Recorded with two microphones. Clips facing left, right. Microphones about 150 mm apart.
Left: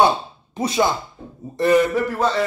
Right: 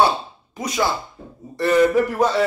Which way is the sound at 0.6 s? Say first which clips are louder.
Left 3 dB; 30° left (ahead or behind).